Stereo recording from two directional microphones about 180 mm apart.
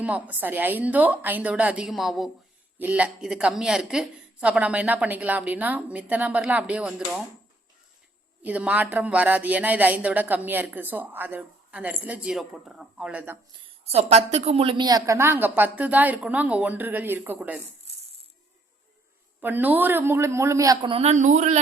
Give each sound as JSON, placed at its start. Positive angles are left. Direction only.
{"t": 0.0, "sound": "speech", "side_deg": -10}
{"t": 8.4, "sound": "speech", "side_deg": -10}
{"t": 13.9, "sound": "speech", "side_deg": -35}
{"t": 19.4, "sound": "speech", "side_deg": -10}
{"t": 20.9, "sound": "speech", "side_deg": -35}